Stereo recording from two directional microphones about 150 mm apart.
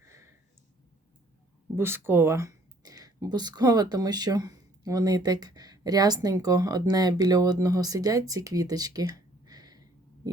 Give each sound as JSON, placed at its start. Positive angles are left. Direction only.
{"t": 1.7, "sound": "speech", "side_deg": -15}